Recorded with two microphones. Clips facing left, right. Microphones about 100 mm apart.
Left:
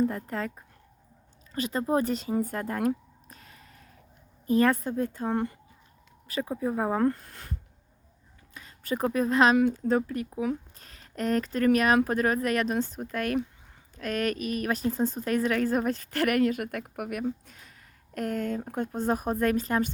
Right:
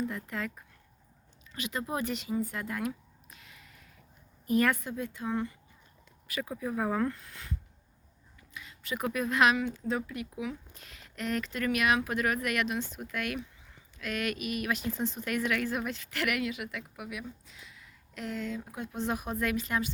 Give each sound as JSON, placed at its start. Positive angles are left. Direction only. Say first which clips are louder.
{"t": 0.0, "sound": "speech", "louder": "left 7 dB", "side_deg": 40}
{"t": 2.3, "sound": "a sound", "louder": "left 4 dB", "side_deg": 45}
{"t": 4.4, "sound": "speech", "louder": "left 4 dB", "side_deg": 30}
{"t": 6.2, "sound": "speech", "louder": "left 6 dB", "side_deg": 30}
{"t": 8.5, "sound": "speech", "louder": "left 6 dB", "side_deg": 40}
{"t": 9.6, "sound": "speech", "louder": "left 8 dB", "side_deg": 45}